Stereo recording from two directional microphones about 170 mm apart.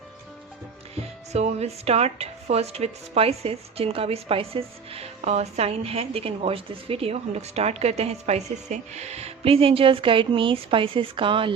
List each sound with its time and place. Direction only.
1.3 s speech: 40° right (ahead or behind)